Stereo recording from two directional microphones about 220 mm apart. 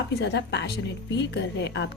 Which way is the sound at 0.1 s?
50° left (ahead or behind).